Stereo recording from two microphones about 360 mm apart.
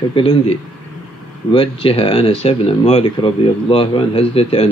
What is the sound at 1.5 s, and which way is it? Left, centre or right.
Speech, centre.